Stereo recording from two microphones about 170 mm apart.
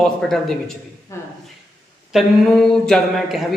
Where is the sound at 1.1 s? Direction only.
15° left (ahead or behind).